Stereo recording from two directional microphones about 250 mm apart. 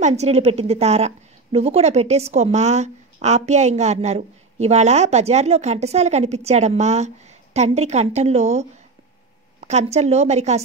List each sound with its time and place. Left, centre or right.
0.0 s a woman's voice: right
9.7 s a woman's voice: right